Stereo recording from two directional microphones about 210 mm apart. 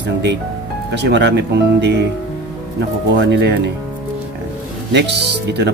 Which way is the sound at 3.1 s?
55° right (ahead or behind).